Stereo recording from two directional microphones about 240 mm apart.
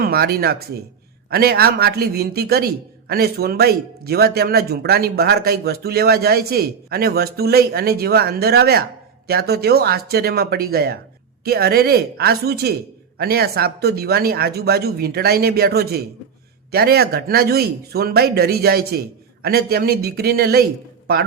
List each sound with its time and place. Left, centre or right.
0.0 s speech: right